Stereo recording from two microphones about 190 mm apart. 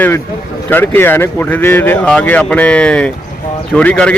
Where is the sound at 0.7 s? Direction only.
10° left (ahead or behind).